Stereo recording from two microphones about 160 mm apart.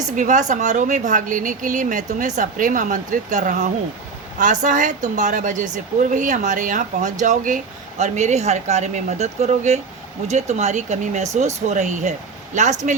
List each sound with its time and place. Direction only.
0.2 s speech: 50° right (ahead or behind)